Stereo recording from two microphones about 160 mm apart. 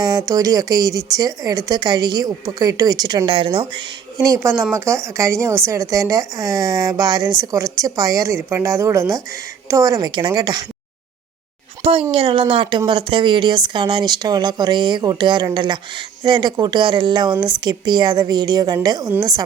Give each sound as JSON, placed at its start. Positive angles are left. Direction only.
{"t": 0.0, "sound": "speech", "side_deg": -25}
{"t": 11.8, "sound": "a woman's voice", "side_deg": -35}